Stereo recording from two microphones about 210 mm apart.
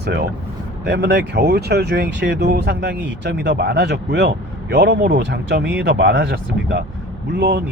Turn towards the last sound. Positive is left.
turn(degrees=-50)  # may be behind; listen again after turning